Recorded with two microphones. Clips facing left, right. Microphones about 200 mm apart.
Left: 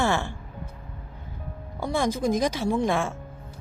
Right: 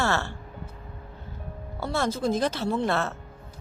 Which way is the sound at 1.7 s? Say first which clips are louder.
Left 2 dB; 15° left (ahead or behind).